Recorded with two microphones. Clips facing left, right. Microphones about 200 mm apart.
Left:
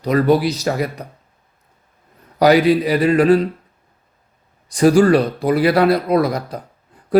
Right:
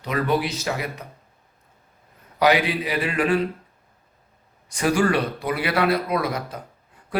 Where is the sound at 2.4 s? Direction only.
40° left (ahead or behind).